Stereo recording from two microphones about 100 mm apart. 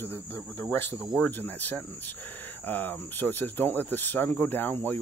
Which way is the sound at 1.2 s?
15° left (ahead or behind).